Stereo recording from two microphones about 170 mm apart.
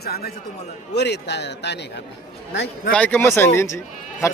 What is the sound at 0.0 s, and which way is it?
Speech, 65° left (ahead or behind).